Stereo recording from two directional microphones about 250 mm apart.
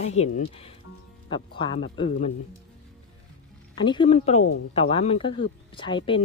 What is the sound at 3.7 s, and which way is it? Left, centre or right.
Speech, centre.